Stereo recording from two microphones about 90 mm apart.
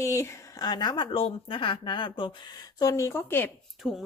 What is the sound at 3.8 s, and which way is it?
Speech, 10° right (ahead or behind).